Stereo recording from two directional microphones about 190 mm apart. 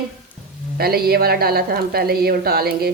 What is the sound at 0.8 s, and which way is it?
Speech, 55° right (ahead or behind).